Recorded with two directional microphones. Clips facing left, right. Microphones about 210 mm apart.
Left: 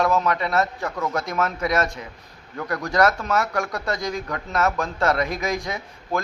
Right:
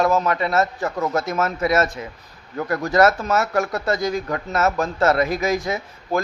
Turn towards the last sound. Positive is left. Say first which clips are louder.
# right 4 dB
turn(degrees=-5)  # may be behind; listen again after turning